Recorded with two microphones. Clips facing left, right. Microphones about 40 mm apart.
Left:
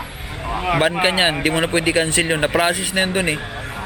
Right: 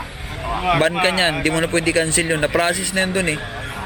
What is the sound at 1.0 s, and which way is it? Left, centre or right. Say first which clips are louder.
Speech: even; centre.